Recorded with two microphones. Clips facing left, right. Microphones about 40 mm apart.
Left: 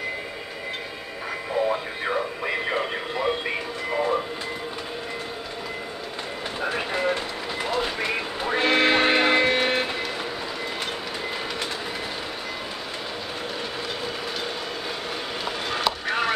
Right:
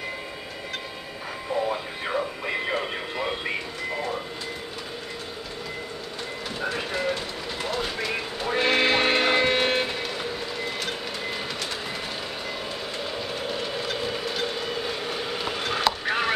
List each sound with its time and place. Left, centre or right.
1.7 s radio: centre
2.5 s a sound: centre
6.6 s train: centre
13.8 s train: centre
15.4 s vehicle: centre